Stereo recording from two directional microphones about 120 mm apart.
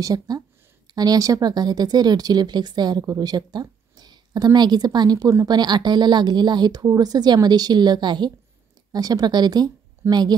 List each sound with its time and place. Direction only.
0.0 s a woman's voice: 30° right (ahead or behind)